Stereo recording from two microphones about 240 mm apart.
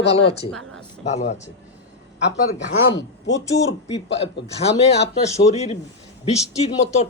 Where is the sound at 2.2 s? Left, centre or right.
Left.